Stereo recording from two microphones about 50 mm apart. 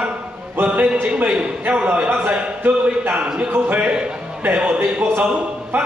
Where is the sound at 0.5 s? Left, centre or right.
Right.